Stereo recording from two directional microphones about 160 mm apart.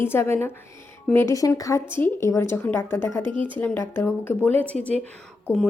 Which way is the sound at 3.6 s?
15° left (ahead or behind).